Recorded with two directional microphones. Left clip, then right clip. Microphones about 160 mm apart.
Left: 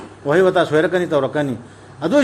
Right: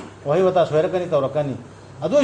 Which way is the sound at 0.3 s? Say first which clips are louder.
Left 3 dB; 90° left.